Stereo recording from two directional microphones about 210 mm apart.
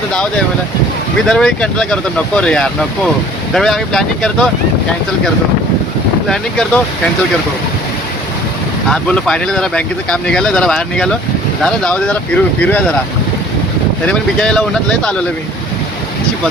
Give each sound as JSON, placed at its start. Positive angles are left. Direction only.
{"t": 1.3, "sound": "speech", "side_deg": 5}
{"t": 6.2, "sound": "speech", "side_deg": 5}
{"t": 8.9, "sound": "speech", "side_deg": 5}
{"t": 14.1, "sound": "speech", "side_deg": 5}